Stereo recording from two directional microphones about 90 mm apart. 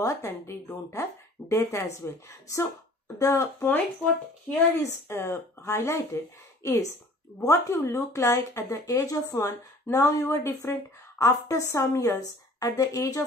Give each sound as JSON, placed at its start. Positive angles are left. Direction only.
{"t": 0.0, "sound": "speech", "side_deg": 35}
{"t": 4.7, "sound": "speech", "side_deg": 30}
{"t": 11.1, "sound": "speech", "side_deg": 40}